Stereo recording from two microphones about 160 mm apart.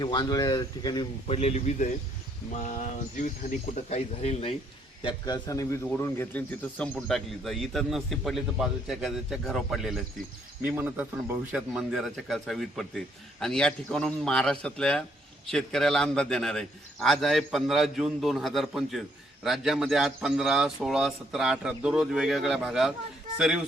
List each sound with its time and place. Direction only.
0.0 s speech: 30° left (ahead or behind)
1.3 s a man's voice: 40° left (ahead or behind)
5.0 s a man's voice: 25° left (ahead or behind); by 22.9 s 5° right (ahead or behind)